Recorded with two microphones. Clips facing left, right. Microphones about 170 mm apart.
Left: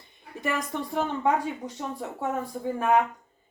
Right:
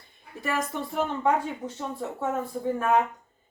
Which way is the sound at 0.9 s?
15° left (ahead or behind).